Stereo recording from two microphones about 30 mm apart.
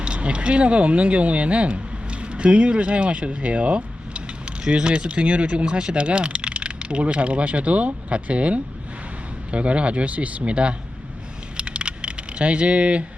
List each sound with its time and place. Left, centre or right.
0.0 s speech: right
11.5 s coin: right